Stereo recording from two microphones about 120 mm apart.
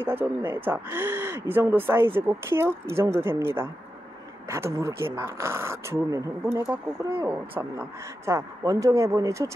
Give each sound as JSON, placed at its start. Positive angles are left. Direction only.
{"t": 0.0, "sound": "speech", "side_deg": -15}